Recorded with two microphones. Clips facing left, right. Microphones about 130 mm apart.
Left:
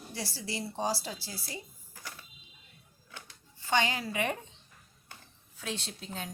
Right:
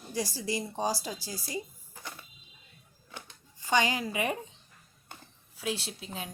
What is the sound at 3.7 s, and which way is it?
Speech, 15° right (ahead or behind).